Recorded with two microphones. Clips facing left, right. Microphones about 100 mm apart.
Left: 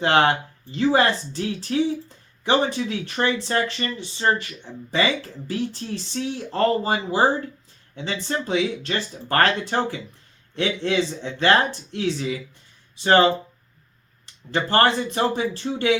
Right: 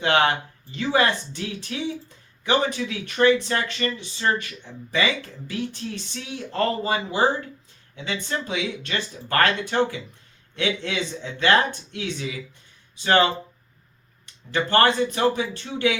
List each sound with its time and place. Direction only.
0.0 s speech: 35° left (ahead or behind)
14.5 s speech: 35° left (ahead or behind)